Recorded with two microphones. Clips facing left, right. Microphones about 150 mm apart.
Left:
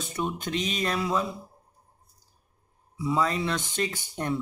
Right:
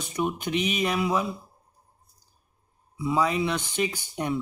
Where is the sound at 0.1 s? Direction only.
15° right (ahead or behind).